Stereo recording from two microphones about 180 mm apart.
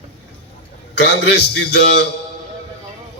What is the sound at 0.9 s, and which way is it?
A man's voice, 70° left (ahead or behind).